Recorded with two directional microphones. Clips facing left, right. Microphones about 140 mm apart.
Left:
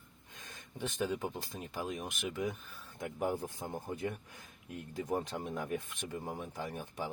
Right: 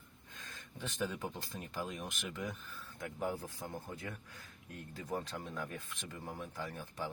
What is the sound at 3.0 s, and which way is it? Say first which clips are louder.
Speech: left 4 dB; 20° left (ahead or behind).